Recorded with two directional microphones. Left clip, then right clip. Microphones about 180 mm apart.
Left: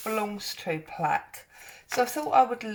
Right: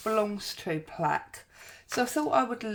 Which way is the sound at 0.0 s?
40° right (ahead or behind).